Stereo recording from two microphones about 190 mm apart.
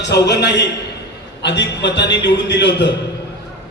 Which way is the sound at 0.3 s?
65° left (ahead or behind).